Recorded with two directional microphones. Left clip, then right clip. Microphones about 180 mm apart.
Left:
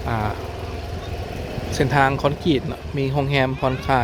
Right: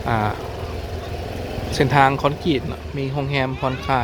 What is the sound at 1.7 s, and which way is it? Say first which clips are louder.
Speech: right 3 dB; 5° right (ahead or behind).